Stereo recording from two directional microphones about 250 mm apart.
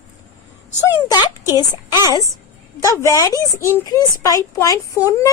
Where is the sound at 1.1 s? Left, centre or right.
Centre.